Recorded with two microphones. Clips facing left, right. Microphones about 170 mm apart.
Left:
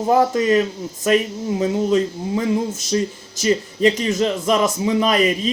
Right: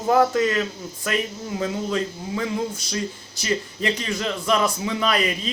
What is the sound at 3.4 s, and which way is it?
A man's voice, 20° left (ahead or behind).